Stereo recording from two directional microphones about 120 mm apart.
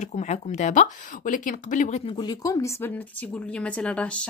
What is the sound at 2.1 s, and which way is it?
Speech, 35° left (ahead or behind).